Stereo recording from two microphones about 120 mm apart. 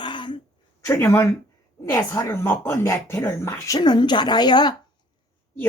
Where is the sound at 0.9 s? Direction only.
20° left (ahead or behind); by 4.7 s 35° left (ahead or behind).